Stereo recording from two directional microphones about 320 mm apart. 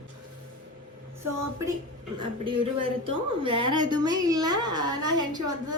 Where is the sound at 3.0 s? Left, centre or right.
Centre.